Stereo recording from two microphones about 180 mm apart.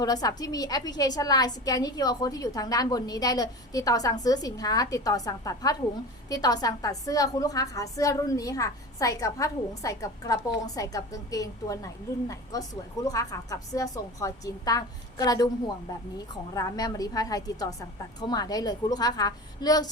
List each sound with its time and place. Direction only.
0.0 s a woman's voice: 20° left (ahead or behind)